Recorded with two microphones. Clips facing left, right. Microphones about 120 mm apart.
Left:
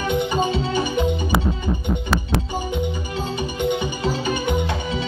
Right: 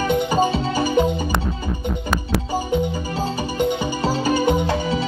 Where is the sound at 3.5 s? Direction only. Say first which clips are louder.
Right 2 dB; 35° right (ahead or behind).